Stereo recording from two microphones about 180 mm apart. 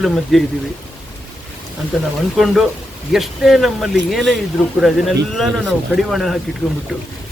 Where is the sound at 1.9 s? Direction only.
Centre (ahead or behind).